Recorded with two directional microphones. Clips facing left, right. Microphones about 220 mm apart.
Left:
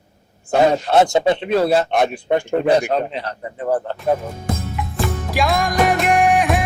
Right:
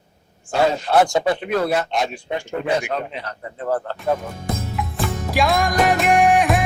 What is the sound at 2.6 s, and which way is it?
Speech, 35° left (ahead or behind).